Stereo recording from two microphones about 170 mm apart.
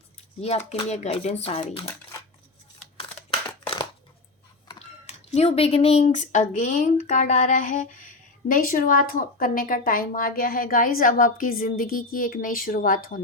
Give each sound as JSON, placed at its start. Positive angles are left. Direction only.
{"t": 0.7, "sound": "speech", "side_deg": 40}
{"t": 5.0, "sound": "speech", "side_deg": 40}